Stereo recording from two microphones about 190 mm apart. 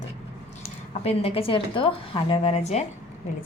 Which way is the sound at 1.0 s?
30° left (ahead or behind).